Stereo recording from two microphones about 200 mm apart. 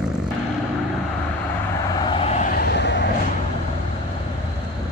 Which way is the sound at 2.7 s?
60° left (ahead or behind).